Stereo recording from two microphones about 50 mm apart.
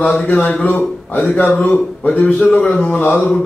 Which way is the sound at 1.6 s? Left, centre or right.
Left.